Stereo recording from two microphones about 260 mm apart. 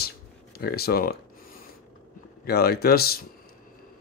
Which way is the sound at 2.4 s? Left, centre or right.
Left.